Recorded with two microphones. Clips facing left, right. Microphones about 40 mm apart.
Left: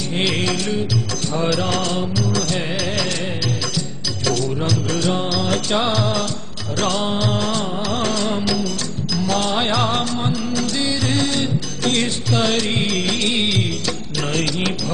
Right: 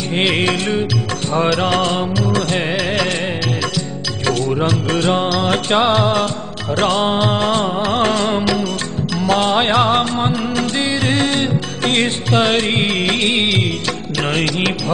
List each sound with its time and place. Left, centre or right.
0.1 s music: right
4.3 s music: right
9.2 s music of bollywood: right